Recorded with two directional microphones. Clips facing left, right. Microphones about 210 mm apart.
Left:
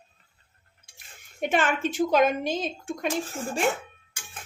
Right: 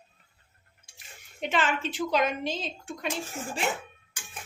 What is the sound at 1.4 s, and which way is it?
Speech, 50° left (ahead or behind).